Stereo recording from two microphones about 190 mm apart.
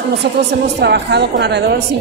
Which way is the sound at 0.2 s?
60° right (ahead or behind).